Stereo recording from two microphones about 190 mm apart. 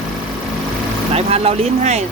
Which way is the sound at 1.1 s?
30° right (ahead or behind).